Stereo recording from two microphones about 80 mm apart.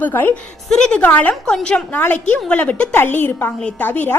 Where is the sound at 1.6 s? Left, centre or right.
Centre.